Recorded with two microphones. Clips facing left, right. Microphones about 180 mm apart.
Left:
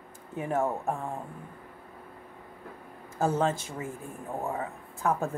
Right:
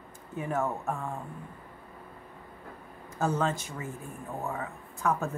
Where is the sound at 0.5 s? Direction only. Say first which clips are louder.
Left 3 dB; 30° left (ahead or behind).